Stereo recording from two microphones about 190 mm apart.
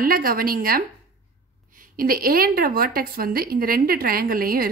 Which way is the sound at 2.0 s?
50° right (ahead or behind).